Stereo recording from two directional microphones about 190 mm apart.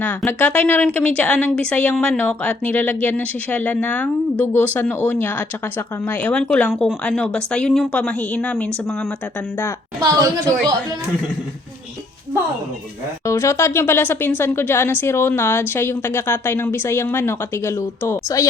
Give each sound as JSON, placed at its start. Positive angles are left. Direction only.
{"t": 0.0, "sound": "a woman's voice", "side_deg": 10}
{"t": 10.0, "sound": "a woman's voice", "side_deg": -20}
{"t": 13.2, "sound": "speech", "side_deg": 15}